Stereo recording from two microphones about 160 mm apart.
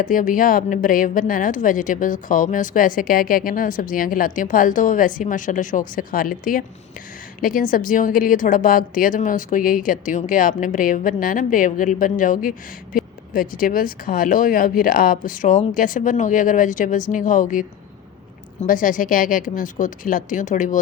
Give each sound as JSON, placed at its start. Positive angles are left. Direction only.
{"t": 0.0, "sound": "speech", "side_deg": 55}